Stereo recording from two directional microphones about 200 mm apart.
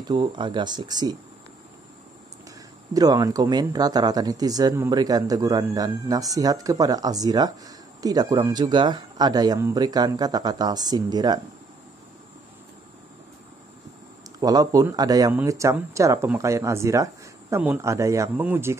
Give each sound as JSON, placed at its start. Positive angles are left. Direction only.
{"t": 0.1, "sound": "speech", "side_deg": -25}
{"t": 2.9, "sound": "speech", "side_deg": -20}
{"t": 14.4, "sound": "speech", "side_deg": -20}